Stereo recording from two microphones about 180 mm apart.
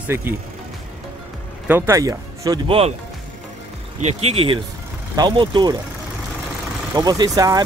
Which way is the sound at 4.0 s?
35° right (ahead or behind).